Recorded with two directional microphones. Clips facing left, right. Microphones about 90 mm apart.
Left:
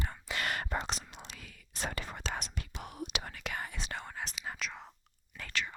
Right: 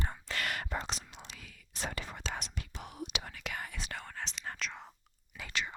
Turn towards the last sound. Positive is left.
turn(degrees=-20)  # may be behind; listen again after turning